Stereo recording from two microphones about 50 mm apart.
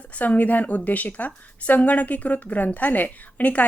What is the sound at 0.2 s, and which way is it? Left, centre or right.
A woman's voice, left.